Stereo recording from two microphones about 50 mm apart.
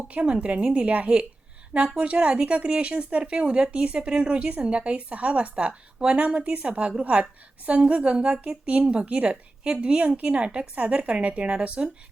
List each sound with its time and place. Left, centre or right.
0.1 s speech: right